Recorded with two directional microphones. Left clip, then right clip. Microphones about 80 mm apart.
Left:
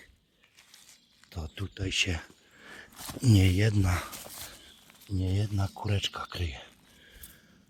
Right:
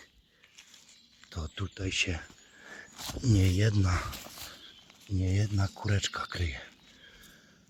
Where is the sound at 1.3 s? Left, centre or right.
Centre.